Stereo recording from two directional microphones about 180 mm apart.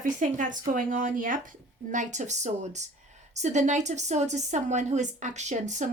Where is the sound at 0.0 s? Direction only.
45° right (ahead or behind).